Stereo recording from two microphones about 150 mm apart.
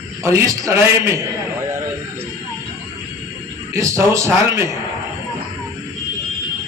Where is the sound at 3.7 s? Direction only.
20° right (ahead or behind).